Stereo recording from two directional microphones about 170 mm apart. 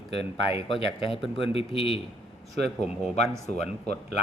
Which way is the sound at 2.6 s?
Centre (ahead or behind).